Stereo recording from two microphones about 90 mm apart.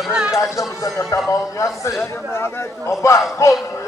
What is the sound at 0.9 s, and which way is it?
A man's voice, 35° left (ahead or behind).